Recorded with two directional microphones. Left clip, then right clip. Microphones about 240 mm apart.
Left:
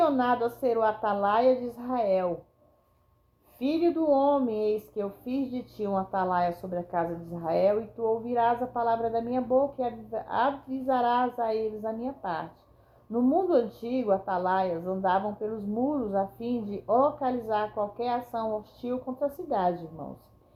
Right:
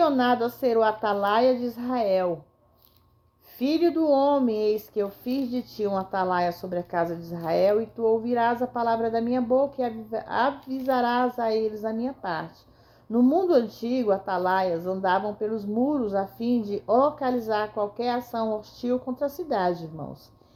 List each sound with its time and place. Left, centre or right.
0.0 s speech: right
3.6 s speech: right